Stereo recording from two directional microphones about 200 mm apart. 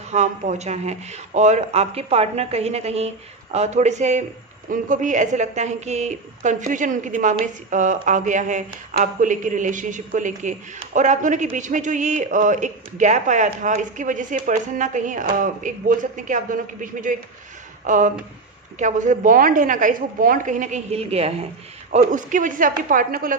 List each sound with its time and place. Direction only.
0.1 s speech: 35° right (ahead or behind)